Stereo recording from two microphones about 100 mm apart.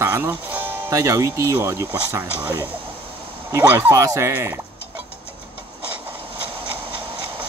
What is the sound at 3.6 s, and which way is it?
Speech, 20° right (ahead or behind).